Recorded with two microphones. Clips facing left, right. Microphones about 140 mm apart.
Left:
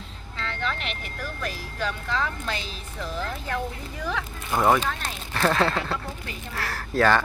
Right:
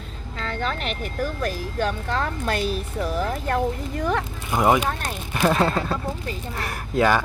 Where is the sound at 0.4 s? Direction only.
40° right (ahead or behind).